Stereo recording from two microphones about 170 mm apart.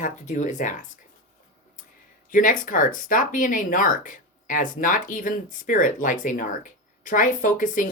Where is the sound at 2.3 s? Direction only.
55° left (ahead or behind).